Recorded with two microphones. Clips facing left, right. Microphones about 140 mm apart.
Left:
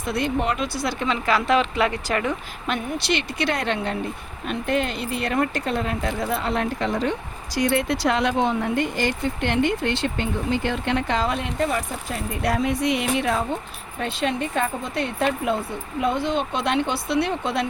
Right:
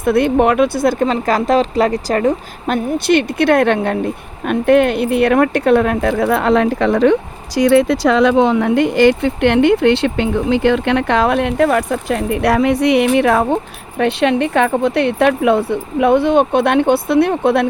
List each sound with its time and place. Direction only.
0.0 s speech: 55° right (ahead or behind)